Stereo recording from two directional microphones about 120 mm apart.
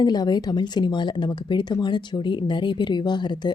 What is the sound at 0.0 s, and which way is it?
Speech, 35° left (ahead or behind).